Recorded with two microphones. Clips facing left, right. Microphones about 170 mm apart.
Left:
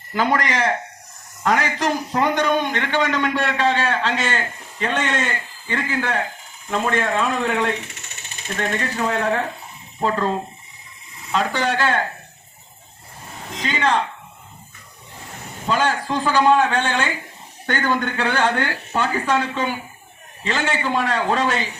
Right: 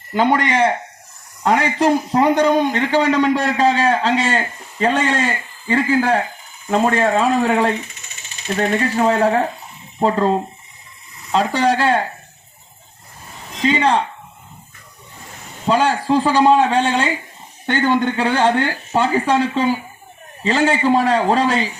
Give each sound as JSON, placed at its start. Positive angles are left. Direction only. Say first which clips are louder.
{"t": 0.1, "sound": "a man's voice", "louder": "right 4 dB", "side_deg": -25}
{"t": 7.9, "sound": "a sound", "louder": "left 1 dB", "side_deg": 70}
{"t": 8.5, "sound": "a man's voice", "louder": "right 6 dB", "side_deg": -35}
{"t": 13.7, "sound": "a man's voice", "louder": "right 5 dB", "side_deg": -30}
{"t": 15.6, "sound": "a man's voice", "louder": "right 4 dB", "side_deg": -30}